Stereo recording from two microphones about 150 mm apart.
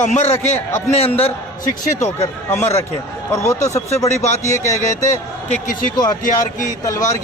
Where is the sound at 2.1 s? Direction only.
15° left (ahead or behind).